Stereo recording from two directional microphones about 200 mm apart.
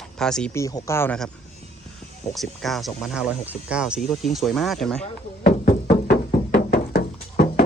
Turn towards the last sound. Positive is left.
turn(degrees=50)  # may be behind; listen again after turning